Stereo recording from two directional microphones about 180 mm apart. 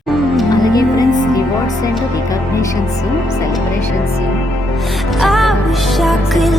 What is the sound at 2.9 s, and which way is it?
Speech, 40° left (ahead or behind).